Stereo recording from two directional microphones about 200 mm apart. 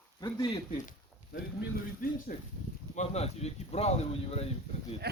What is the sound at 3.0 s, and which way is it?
Speech, 30° left (ahead or behind).